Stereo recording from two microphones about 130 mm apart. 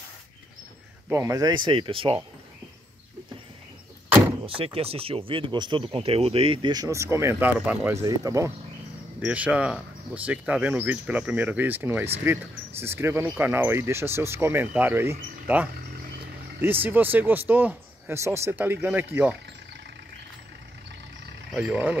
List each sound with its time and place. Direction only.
1.0 s speech: 20° right (ahead or behind); by 2.1 s 45° right (ahead or behind)
4.5 s speech: 45° right (ahead or behind); by 7.9 s 10° right (ahead or behind)
8.0 s speech: 25° right (ahead or behind)
9.2 s speech: 10° right (ahead or behind)
21.5 s speech: 10° right (ahead or behind)